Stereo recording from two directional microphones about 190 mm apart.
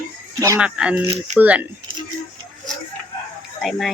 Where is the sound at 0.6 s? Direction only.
5° right (ahead or behind).